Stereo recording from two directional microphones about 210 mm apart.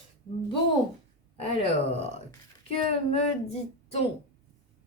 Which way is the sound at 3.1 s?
30° left (ahead or behind).